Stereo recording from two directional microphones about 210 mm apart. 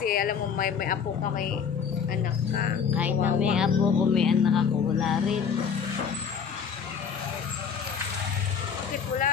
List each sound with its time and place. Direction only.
0.0 s speech: 45° left (ahead or behind)
2.9 s speech: 10° right (ahead or behind)